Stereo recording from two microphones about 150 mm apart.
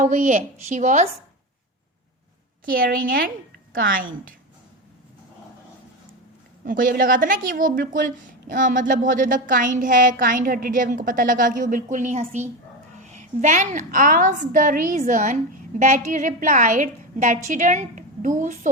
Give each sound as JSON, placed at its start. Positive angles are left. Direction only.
{"t": 0.0, "sound": "a woman's voice", "side_deg": -55}
{"t": 2.6, "sound": "a woman's voice", "side_deg": -70}
{"t": 6.7, "sound": "a woman's voice", "side_deg": -65}